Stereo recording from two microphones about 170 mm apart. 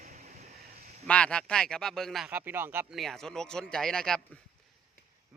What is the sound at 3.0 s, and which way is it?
Speech, centre (ahead or behind).